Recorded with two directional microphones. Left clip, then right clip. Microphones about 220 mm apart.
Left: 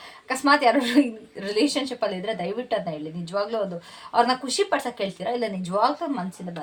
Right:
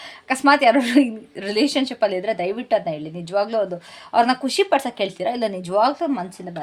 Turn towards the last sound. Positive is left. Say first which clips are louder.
# right 4 dB
turn(degrees=-45)  # may be behind; listen again after turning